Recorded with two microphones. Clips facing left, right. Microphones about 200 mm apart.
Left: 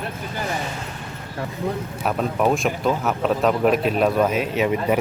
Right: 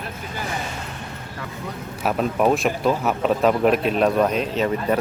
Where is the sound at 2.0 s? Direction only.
Centre (ahead or behind).